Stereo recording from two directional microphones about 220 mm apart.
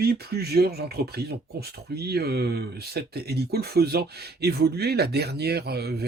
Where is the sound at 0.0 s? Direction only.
45° right (ahead or behind).